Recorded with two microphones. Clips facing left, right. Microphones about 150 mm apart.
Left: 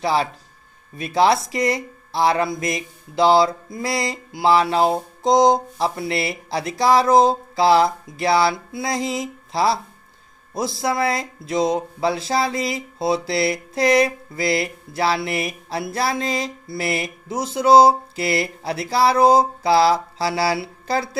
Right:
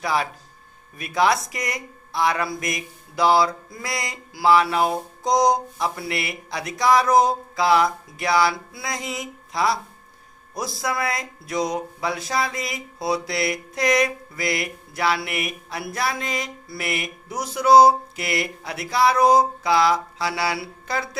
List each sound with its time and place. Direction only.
0.0 s speech: 30° left (ahead or behind)